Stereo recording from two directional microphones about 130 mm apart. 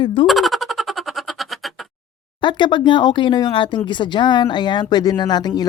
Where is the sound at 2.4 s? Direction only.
35° left (ahead or behind).